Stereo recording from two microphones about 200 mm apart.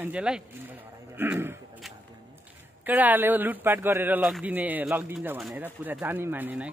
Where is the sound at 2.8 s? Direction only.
10° right (ahead or behind).